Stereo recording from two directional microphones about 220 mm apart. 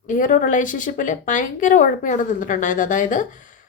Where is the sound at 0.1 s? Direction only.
35° left (ahead or behind).